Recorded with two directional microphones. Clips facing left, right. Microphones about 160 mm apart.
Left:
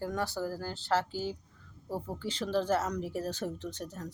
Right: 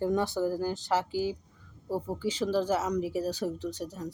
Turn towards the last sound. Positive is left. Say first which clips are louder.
# right 4 dB
turn(degrees=-10)  # may be behind; listen again after turning